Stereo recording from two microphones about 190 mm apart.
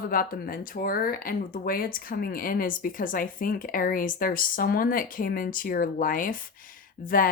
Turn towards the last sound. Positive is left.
turn(degrees=45)  # may be behind; listen again after turning